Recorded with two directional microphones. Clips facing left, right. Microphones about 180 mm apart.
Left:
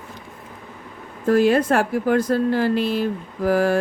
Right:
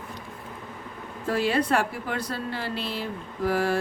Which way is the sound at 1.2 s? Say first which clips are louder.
Left 8 dB; 45° left (ahead or behind).